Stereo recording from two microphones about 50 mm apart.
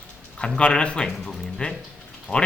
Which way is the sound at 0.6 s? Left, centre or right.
Left.